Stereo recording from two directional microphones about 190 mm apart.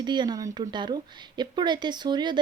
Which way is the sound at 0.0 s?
25° right (ahead or behind).